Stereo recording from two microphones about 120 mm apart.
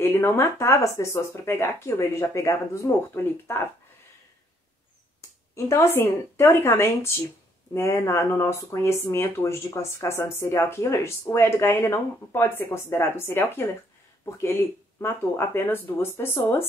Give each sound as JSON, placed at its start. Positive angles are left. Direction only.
{"t": 0.0, "sound": "speech", "side_deg": 20}
{"t": 5.5, "sound": "speech", "side_deg": 25}